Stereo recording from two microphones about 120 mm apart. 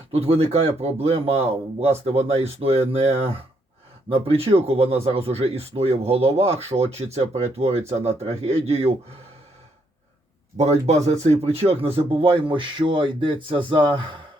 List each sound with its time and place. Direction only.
0.1 s speech: 55° right (ahead or behind)
10.6 s speech: 65° right (ahead or behind); by 14.2 s 40° right (ahead or behind)